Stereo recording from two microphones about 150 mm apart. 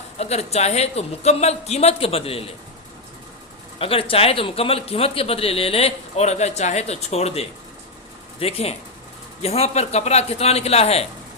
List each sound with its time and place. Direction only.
0.2 s speech: 45° left (ahead or behind)
3.8 s a man's voice: 40° left (ahead or behind)